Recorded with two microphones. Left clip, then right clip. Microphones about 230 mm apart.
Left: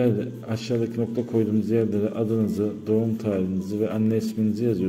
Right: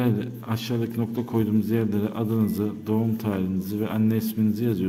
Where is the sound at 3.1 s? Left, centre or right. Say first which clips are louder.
Left 2 dB; centre.